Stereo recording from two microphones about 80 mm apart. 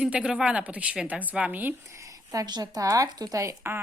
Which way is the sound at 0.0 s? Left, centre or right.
Centre.